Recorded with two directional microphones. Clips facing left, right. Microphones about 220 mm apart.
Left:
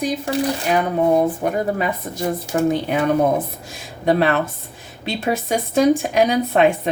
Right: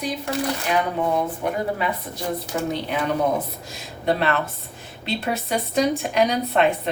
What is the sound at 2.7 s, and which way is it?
Speech, 50° left (ahead or behind).